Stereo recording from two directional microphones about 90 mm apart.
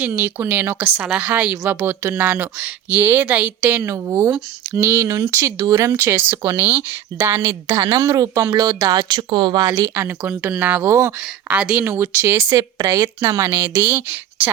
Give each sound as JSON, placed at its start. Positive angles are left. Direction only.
{"t": 0.0, "sound": "a woman's voice", "side_deg": -20}
{"t": 1.7, "sound": "speech", "side_deg": -25}
{"t": 3.8, "sound": "speech", "side_deg": -30}
{"t": 6.3, "sound": "speech", "side_deg": -40}
{"t": 6.6, "sound": "speech", "side_deg": -20}
{"t": 9.9, "sound": "speech", "side_deg": -25}
{"t": 11.4, "sound": "a woman's voice", "side_deg": -15}
{"t": 11.8, "sound": "speech", "side_deg": -30}
{"t": 12.5, "sound": "speech", "side_deg": -40}
{"t": 13.0, "sound": "speech", "side_deg": -30}